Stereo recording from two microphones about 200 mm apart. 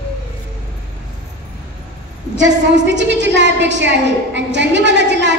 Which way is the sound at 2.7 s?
60° right (ahead or behind).